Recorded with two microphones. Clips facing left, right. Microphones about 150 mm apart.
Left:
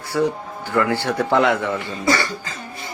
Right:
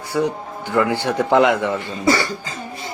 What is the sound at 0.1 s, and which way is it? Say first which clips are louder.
A man's voice: even; 15° right (ahead or behind).